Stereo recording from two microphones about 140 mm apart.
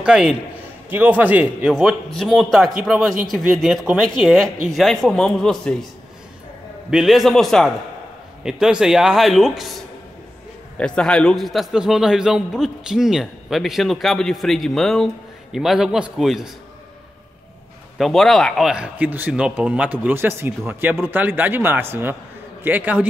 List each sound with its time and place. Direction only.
0.0 s a man's voice: 5° right (ahead or behind)
1.7 s a man's voice: centre (ahead or behind)
6.9 s a man's voice: centre (ahead or behind)
10.8 s a man's voice: 5° left (ahead or behind)
17.9 s a man's voice: centre (ahead or behind)